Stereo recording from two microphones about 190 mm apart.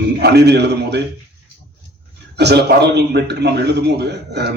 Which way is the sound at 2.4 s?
60° right (ahead or behind).